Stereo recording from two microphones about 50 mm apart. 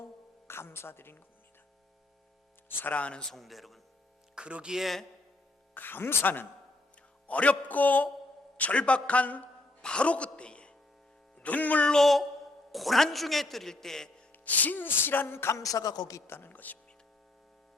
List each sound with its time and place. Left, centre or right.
0.0 s music: left
2.7 s a man's voice: left
3.3 s a man's voice: centre
4.4 s speech: right
4.7 s a man's voice: centre
5.7 s music: left
7.3 s music: left
8.5 s a man's voice: left
9.8 s music: left
11.4 s music: left
11.9 s a sound: centre
12.7 s a man's voice: centre
14.3 s music: left
16.3 s music: left